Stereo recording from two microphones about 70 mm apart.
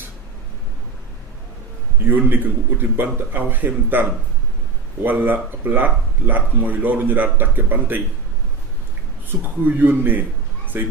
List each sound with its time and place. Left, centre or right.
2.0 s speech: right
5.0 s speech: right
9.3 s speech: centre
9.6 s speech: right